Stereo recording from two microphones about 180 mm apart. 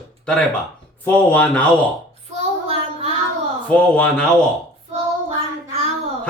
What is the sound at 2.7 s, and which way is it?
Child singing, 35° right (ahead or behind).